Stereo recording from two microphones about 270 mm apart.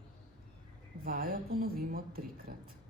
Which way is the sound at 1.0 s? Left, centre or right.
Right.